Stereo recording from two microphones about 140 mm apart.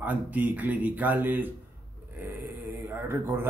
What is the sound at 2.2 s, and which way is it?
Mantra, 15° right (ahead or behind).